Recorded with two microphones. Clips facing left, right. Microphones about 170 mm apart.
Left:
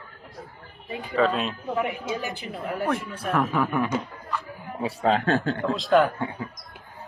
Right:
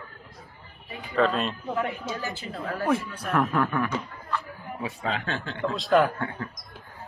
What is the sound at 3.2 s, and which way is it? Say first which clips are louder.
Speech: left 2 dB; centre (ahead or behind).